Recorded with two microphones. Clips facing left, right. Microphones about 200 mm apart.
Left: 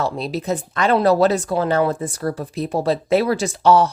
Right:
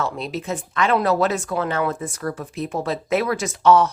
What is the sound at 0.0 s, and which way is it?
Speech, 35° left (ahead or behind).